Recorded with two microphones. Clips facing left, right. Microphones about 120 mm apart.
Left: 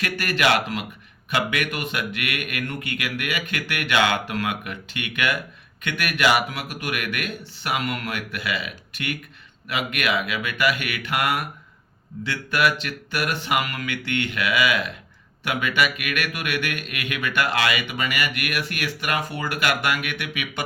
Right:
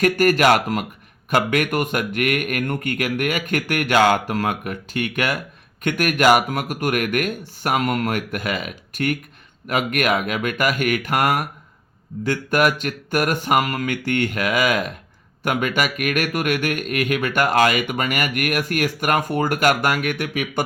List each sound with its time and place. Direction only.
0.0 s speech: 45° right (ahead or behind)